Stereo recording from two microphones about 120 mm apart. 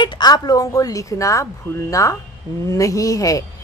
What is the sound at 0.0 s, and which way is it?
A woman's voice, 35° left (ahead or behind).